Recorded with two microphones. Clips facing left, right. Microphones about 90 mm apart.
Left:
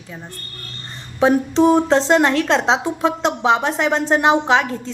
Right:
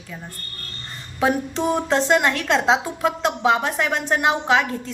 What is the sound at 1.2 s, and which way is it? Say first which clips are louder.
A woman's voice: left 7 dB; 25° left (ahead or behind).